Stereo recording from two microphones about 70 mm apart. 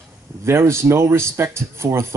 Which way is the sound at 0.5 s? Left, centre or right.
Right.